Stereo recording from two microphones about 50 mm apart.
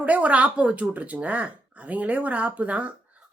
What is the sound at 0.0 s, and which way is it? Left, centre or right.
Speech, right.